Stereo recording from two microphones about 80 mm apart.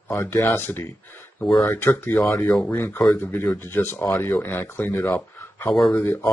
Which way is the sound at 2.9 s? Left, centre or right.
Left.